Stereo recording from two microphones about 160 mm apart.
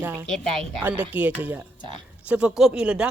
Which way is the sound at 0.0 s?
10° right (ahead or behind).